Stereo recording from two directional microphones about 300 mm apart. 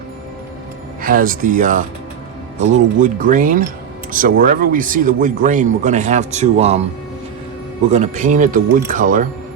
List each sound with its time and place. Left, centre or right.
1.0 s a man's voice: right
7.9 s a man's voice: right